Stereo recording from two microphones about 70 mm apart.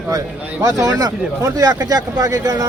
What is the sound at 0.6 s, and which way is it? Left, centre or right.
Speech, right.